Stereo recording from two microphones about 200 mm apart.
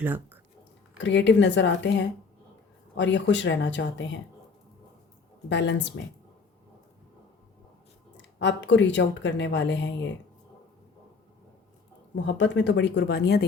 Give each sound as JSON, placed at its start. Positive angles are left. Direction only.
{"t": 0.0, "sound": "speech", "side_deg": -10}
{"t": 0.9, "sound": "speech", "side_deg": 65}
{"t": 5.5, "sound": "speech", "side_deg": 60}
{"t": 8.1, "sound": "speech", "side_deg": 60}
{"t": 12.1, "sound": "speech", "side_deg": 60}